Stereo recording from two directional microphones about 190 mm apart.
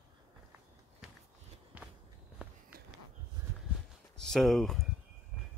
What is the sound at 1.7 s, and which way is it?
Walk, 10° right (ahead or behind).